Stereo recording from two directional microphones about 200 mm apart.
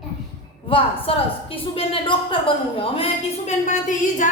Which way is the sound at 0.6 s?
25° left (ahead or behind).